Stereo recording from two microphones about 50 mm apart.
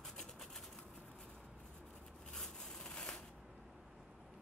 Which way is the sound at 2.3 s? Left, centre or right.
Centre.